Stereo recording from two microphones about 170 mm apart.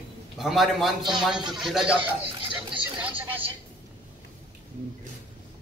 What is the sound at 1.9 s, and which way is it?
Speech, 30° right (ahead or behind).